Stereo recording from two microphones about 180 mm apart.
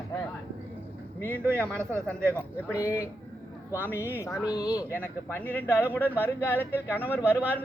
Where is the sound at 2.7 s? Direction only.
10° right (ahead or behind).